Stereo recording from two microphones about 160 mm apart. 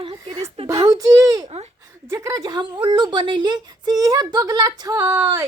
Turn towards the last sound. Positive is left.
turn(degrees=-15)  # may be behind; listen again after turning